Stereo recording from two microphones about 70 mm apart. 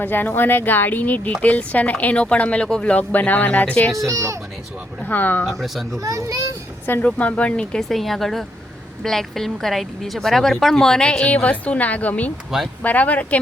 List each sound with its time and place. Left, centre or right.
0.0 s speech: left
3.9 s a child's voice: right
5.0 s speech: left
5.5 s speech: centre
6.0 s a child's voice: right
7.0 s speech: centre